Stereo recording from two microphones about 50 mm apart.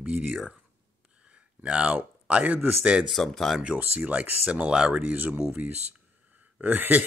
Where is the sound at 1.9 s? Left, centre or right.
Right.